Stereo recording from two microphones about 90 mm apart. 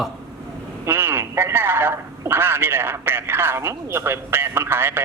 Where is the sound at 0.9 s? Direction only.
25° right (ahead or behind).